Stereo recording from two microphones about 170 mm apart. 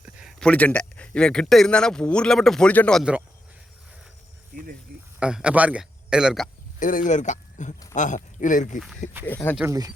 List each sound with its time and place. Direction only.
0.0 s speech: 5° right (ahead or behind)
3.0 s speech: 5° right (ahead or behind)
4.9 s a sound: 70° right (ahead or behind)
5.2 s speech: 5° right (ahead or behind)
6.7 s speech: 50° left (ahead or behind)
9.2 s speech: 10° left (ahead or behind)
9.6 s speech: 20° right (ahead or behind)